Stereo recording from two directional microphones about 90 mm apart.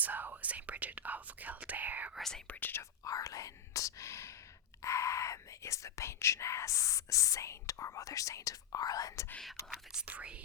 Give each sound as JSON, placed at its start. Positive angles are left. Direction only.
{"t": 0.0, "sound": "whispering", "side_deg": -20}
{"t": 2.1, "sound": "whispering", "side_deg": 5}
{"t": 2.5, "sound": "speech", "side_deg": 20}
{"t": 3.0, "sound": "whispering", "side_deg": 40}
{"t": 4.8, "sound": "speech", "side_deg": 35}
{"t": 9.6, "sound": "speech", "side_deg": -5}